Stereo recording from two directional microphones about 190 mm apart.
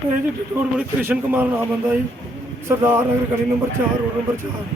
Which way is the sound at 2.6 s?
10° right (ahead or behind).